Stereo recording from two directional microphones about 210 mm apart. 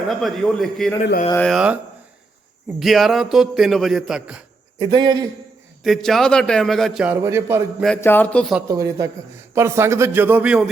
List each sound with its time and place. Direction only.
0.1 s a man's voice: centre (ahead or behind)
4.8 s a man's voice: 20° right (ahead or behind)
5.8 s a man's voice: centre (ahead or behind)
7.9 s a man's voice: 10° left (ahead or behind)
8.6 s a man's voice: 15° right (ahead or behind)